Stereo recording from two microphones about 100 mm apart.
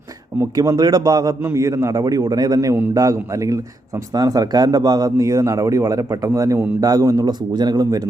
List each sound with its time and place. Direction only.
0.5 s speech: 40° right (ahead or behind)